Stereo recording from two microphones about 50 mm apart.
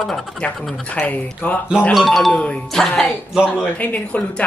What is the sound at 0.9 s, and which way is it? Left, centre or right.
Speech, left.